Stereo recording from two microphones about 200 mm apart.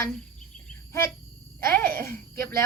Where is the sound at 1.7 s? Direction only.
10° left (ahead or behind).